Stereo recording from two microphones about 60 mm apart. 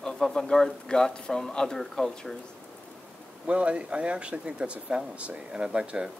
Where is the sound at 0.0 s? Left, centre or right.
Centre.